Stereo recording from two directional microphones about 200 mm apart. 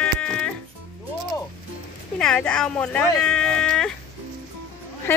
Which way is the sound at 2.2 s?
5° left (ahead or behind).